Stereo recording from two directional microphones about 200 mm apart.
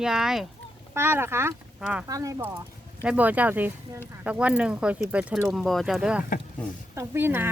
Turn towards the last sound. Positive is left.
turn(degrees=-10)  # may be behind; listen again after turning